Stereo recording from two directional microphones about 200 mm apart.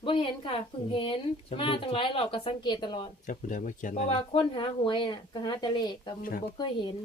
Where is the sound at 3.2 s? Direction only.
40° left (ahead or behind); by 7.0 s 25° left (ahead or behind).